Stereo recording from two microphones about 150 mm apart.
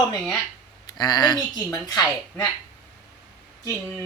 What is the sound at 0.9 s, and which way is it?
Speech, 25° left (ahead or behind).